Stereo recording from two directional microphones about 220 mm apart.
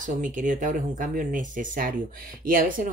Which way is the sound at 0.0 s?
35° right (ahead or behind).